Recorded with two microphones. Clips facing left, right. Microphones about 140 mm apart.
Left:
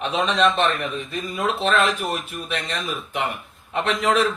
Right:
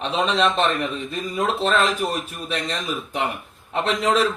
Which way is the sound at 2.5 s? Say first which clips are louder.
Right 2 dB; 35° right (ahead or behind).